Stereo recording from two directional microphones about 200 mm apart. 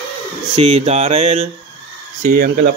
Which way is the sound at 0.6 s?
30° right (ahead or behind).